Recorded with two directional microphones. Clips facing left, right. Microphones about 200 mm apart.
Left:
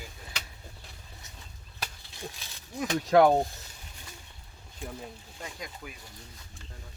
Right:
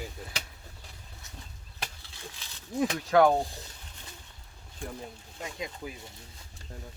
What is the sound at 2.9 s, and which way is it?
Speech, 30° left (ahead or behind).